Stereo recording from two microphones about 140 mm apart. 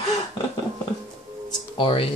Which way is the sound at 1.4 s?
35° left (ahead or behind).